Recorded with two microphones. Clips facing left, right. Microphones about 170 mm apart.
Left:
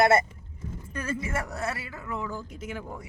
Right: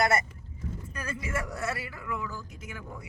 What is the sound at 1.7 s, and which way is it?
Speech, 25° left (ahead or behind).